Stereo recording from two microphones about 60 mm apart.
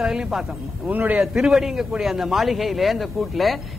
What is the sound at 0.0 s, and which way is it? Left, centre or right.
Speech, centre.